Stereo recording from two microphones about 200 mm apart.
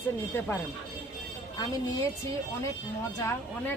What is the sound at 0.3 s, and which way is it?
Speech, 10° left (ahead or behind).